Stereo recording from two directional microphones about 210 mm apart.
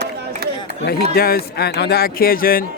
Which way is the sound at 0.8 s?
45° left (ahead or behind).